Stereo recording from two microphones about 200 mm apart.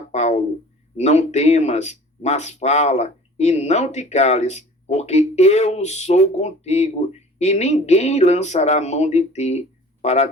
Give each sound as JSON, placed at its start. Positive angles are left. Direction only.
{"t": 0.1, "sound": "speech", "side_deg": 35}